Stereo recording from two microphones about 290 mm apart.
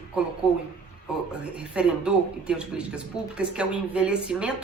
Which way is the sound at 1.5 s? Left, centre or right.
Centre.